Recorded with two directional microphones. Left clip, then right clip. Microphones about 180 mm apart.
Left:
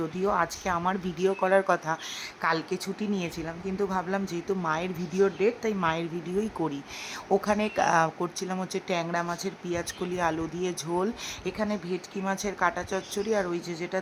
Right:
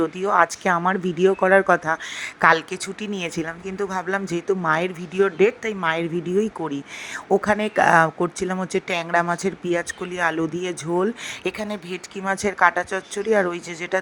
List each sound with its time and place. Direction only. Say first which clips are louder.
0.0 s speech: right 8 dB; 30° right (ahead or behind)
2.4 s speech: right 11 dB; 35° right (ahead or behind); by 11.1 s 20° right (ahead or behind)
11.4 s speech: right 3 dB; 40° right (ahead or behind)